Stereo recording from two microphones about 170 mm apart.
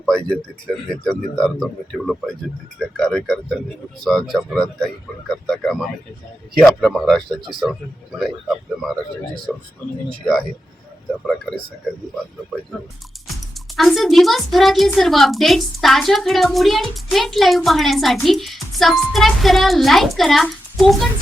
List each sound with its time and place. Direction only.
0.0 s a child's voice: 5° left (ahead or behind)
13.2 s a child's voice: centre (ahead or behind)